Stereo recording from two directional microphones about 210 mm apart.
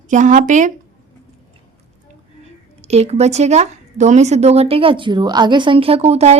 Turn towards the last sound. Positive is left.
turn(degrees=-30)  # may be behind; listen again after turning